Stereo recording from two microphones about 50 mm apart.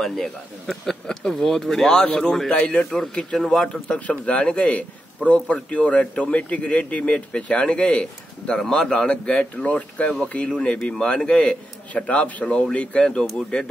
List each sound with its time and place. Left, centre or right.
0.0 s a man's voice: centre
2.5 s a man's voice: left
3.3 s a man's voice: centre
9.0 s a man's voice: left
11.9 s a man's voice: left